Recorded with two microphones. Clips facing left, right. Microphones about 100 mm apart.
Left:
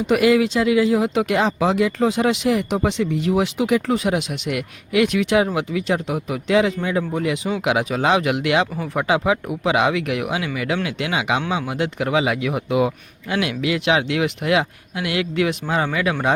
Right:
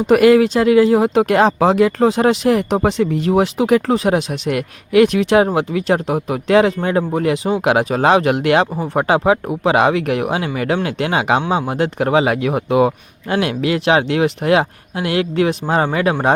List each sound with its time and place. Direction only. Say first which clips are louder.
0.1 s speech: right 6 dB; 45° right (ahead or behind)